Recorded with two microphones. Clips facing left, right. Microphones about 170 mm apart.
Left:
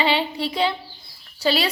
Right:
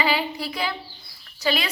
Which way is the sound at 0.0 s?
25° left (ahead or behind).